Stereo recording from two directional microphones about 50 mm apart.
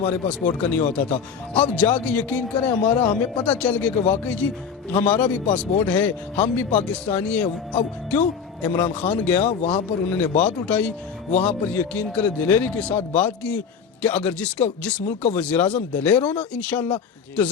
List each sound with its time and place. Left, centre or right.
0.3 s speech: left